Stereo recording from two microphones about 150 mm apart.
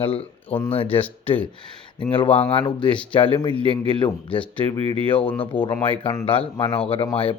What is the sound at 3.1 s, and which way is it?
Speech, 35° left (ahead or behind).